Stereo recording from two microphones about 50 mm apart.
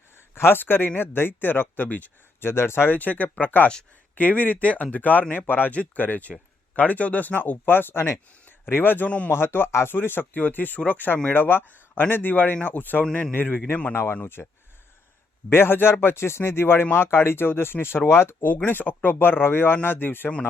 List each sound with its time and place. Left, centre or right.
0.3 s speech: left
2.4 s speech: left
2.9 s speech: left
9.0 s speech: left
9.3 s speech: left
13.9 s speech: left
14.4 s speech: centre
15.4 s speech: left
18.4 s speech: left